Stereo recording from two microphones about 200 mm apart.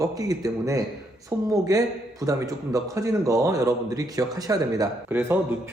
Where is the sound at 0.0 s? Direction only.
15° right (ahead or behind).